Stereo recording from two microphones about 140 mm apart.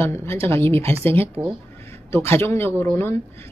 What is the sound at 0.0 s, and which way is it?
A man's voice, 15° left (ahead or behind).